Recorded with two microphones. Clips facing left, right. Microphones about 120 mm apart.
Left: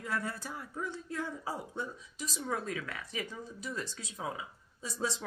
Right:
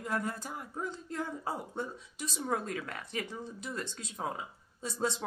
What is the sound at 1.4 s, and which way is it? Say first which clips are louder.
Speech: right 2 dB; 55° right (ahead or behind).